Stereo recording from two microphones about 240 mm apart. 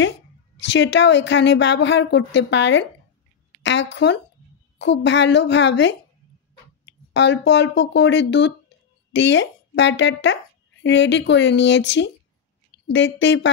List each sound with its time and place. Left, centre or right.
0.6 s a woman's voice: left
7.2 s a woman's voice: left